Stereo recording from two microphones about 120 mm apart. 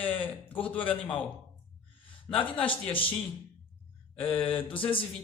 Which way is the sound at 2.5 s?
45° left (ahead or behind).